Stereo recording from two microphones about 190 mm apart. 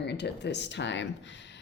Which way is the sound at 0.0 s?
65° left (ahead or behind).